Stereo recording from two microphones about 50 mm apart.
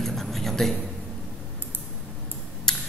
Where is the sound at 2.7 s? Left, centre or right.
Centre.